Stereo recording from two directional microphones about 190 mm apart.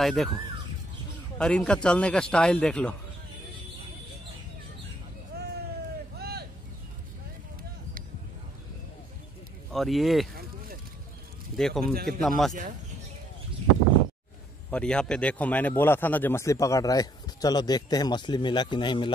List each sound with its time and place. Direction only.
0.0 s a man's voice: centre (ahead or behind)
1.4 s a man's voice: 5° left (ahead or behind)
5.3 s a sound: 55° right (ahead or behind)
6.1 s vehicle: 55° right (ahead or behind)
9.7 s a man's voice: centre (ahead or behind)
11.5 s a man's voice: 5° left (ahead or behind)
14.7 s a man's voice: 5° left (ahead or behind); by 19.1 s 25° left (ahead or behind)